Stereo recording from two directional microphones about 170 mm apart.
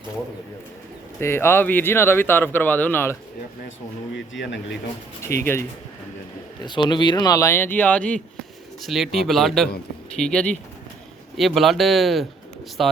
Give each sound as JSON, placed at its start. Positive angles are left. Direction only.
{"t": 1.2, "sound": "speech", "side_deg": 15}
{"t": 4.1, "sound": "speech", "side_deg": 90}
{"t": 5.2, "sound": "speech", "side_deg": 15}
{"t": 6.7, "sound": "speech", "side_deg": 25}